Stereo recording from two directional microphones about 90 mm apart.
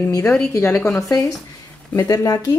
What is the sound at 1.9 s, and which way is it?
Speech, 40° left (ahead or behind).